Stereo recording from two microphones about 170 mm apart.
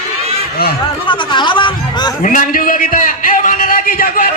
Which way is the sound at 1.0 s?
30° left (ahead or behind).